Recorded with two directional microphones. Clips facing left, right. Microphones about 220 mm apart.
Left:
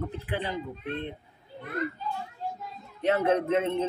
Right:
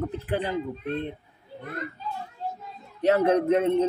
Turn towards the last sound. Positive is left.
turn(degrees=-40)  # may be behind; listen again after turning